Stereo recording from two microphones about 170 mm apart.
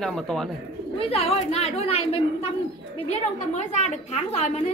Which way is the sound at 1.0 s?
35° left (ahead or behind).